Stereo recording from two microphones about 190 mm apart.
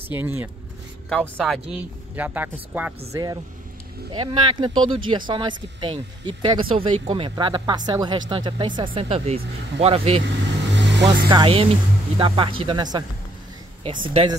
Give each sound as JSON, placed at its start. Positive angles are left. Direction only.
{"t": 0.1, "sound": "speech", "side_deg": -10}
{"t": 2.1, "sound": "speech", "side_deg": -10}
{"t": 3.1, "sound": "speech", "side_deg": -20}
{"t": 10.2, "sound": "vehicle", "side_deg": -70}
{"t": 11.2, "sound": "speech", "side_deg": -25}
{"t": 14.0, "sound": "speech", "side_deg": -25}